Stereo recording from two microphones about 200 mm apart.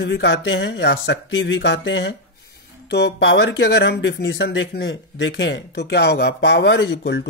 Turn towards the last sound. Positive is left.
turn(degrees=60)  # may be behind; listen again after turning